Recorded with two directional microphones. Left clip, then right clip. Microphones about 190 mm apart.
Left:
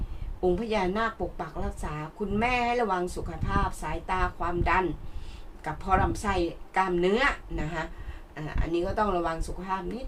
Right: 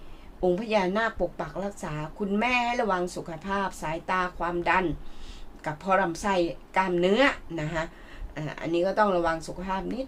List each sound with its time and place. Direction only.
0.4 s a woman's voice: 40° right (ahead or behind)